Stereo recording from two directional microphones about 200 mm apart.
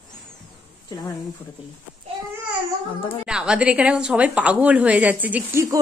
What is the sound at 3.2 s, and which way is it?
A woman's voice, 5° right (ahead or behind).